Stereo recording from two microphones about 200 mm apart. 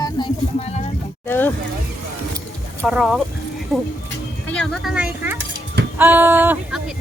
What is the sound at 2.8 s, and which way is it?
Speech, centre (ahead or behind).